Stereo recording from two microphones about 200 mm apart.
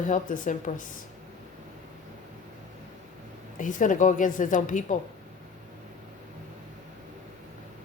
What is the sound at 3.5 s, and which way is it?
Speech, 40° left (ahead or behind).